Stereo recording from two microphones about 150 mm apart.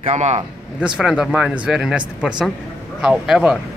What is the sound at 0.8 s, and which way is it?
Speech, 5° right (ahead or behind).